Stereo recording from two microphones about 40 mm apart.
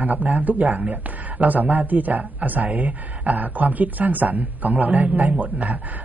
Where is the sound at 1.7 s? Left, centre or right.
Right.